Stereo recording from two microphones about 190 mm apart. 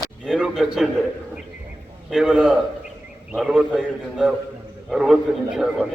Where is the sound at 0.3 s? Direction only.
Centre (ahead or behind).